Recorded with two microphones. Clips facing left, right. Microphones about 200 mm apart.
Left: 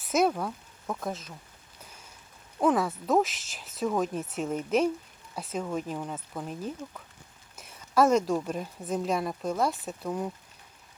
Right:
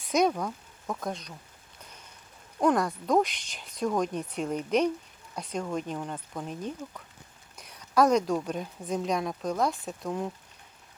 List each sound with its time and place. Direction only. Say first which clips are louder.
0.0 s speech: even; 5° left (ahead or behind)
2.6 s a woman's voice: even; 5° left (ahead or behind)